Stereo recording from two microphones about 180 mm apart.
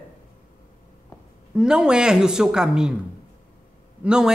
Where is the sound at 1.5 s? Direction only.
5° right (ahead or behind).